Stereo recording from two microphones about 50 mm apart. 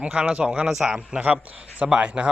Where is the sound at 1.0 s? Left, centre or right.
Right.